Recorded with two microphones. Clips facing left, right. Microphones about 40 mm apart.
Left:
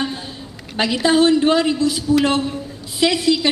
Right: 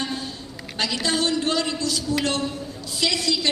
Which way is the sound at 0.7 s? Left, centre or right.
Left.